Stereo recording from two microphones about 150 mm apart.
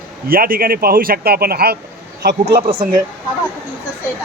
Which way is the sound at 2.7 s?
75° right (ahead or behind).